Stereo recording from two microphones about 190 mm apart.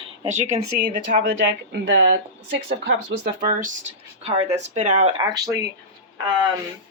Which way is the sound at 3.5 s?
45° right (ahead or behind).